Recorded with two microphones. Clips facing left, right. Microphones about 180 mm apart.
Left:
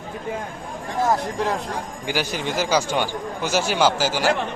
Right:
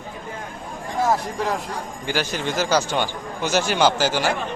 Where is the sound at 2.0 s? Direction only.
10° left (ahead or behind).